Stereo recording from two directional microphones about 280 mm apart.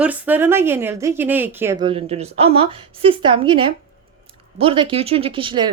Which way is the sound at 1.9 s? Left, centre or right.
Right.